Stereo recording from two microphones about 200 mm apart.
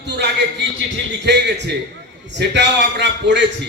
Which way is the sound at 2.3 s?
60° right (ahead or behind).